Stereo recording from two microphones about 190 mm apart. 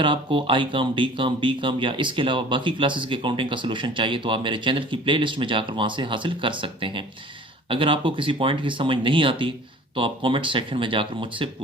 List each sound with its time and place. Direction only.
0.0 s speech: 25° right (ahead or behind)